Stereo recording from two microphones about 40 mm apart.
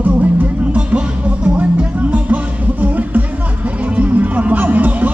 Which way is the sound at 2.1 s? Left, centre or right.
Right.